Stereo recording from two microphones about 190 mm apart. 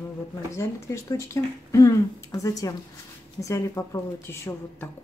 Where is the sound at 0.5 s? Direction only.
15° left (ahead or behind).